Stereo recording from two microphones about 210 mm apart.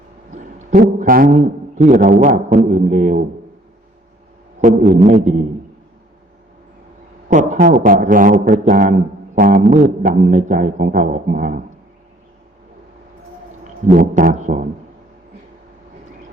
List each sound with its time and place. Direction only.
0.3 s a sound: 35° right (ahead or behind)
1.8 s a man's voice: 40° right (ahead or behind)
4.6 s a man's voice: 35° right (ahead or behind)
7.3 s a man's voice: 40° right (ahead or behind)
13.8 s a man's voice: 40° right (ahead or behind)